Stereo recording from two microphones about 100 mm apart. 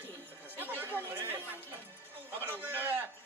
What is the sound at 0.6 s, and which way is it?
Chatter, 20° right (ahead or behind).